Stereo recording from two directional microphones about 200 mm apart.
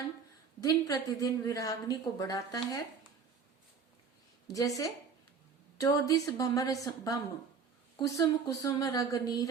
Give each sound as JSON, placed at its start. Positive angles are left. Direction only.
{"t": 0.6, "sound": "a woman's voice", "side_deg": 20}
{"t": 4.4, "sound": "a woman's voice", "side_deg": 15}